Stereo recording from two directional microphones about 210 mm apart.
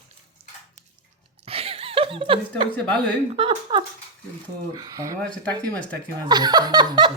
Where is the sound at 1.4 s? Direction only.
30° right (ahead or behind).